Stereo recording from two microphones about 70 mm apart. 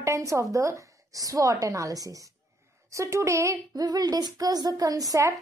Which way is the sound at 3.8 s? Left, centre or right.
Right.